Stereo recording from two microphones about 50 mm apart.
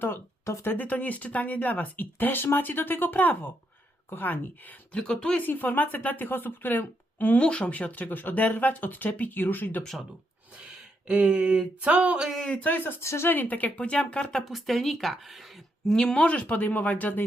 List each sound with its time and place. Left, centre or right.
0.6 s speech: left
4.9 s speech: centre
5.4 s speech: left
7.3 s speech: left
10.6 s a sound: right
12.5 s speech: left
13.0 s speech: left
13.2 s speech: left; by 14.4 s centre
14.5 s speech: centre
15.9 s speech: centre; by 17.2 s left